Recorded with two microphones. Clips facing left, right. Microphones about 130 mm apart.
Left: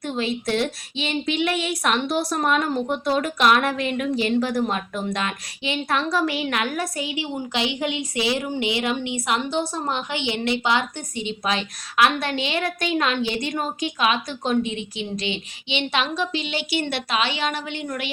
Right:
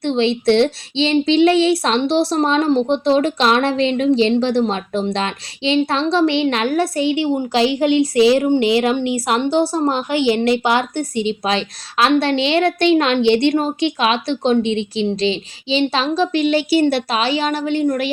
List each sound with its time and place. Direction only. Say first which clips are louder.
0.0 s a woman's voice: right 9 dB; 30° right (ahead or behind)
13.2 s a woman's voice: right 13 dB; 80° right
13.5 s a woman's voice: right 9 dB; 30° right (ahead or behind)
16.3 s a woman's voice: right 11 dB; 45° right (ahead or behind)